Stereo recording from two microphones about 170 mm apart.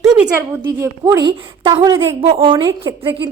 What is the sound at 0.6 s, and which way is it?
A woman's voice, 20° right (ahead or behind).